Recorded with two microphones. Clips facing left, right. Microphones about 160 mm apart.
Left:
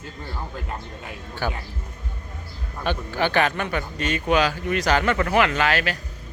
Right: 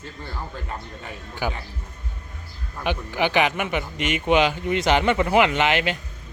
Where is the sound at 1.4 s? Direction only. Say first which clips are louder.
Even; 15° right (ahead or behind).